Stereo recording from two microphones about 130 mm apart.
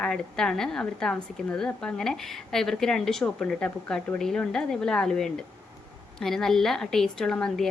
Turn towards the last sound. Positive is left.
turn(degrees=5)  # may be behind; listen again after turning